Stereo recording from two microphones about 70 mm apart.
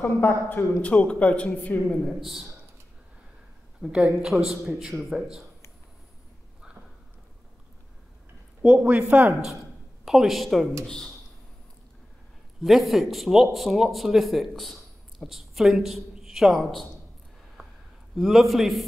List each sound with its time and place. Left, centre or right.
0.0 s a man's voice: left
0.8 s speech: centre
2.1 s speech: centre
3.8 s speech: centre
8.6 s speech: centre
10.0 s speech: centre
12.6 s speech: centre
18.1 s speech: centre